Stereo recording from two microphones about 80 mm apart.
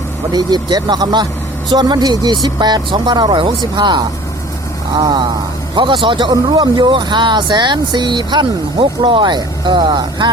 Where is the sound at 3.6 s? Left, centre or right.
Right.